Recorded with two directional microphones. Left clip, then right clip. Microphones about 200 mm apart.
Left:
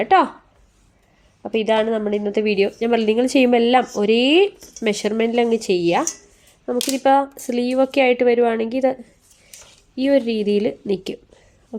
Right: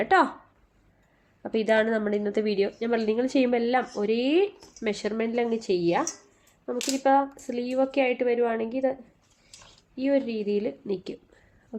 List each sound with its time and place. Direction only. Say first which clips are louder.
0.0 s speech: left 6 dB; 20° left (ahead or behind)
1.4 s a woman's voice: left 5 dB; 20° left (ahead or behind); by 11.2 s 35° left (ahead or behind)